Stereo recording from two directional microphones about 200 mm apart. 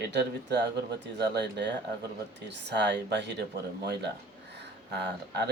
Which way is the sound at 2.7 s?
60° right (ahead or behind).